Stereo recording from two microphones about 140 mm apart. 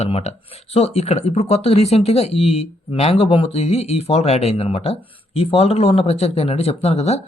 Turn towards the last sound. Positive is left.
turn(degrees=50)  # may be behind; listen again after turning